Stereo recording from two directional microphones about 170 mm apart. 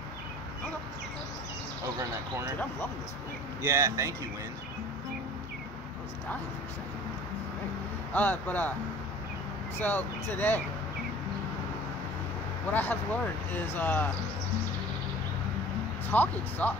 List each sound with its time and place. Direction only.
3.6 s speech: 15° right (ahead or behind)
8.1 s speech: 10° left (ahead or behind)
9.8 s speech: 10° left (ahead or behind)
12.7 s speech: 10° left (ahead or behind)
16.1 s speech: 10° left (ahead or behind)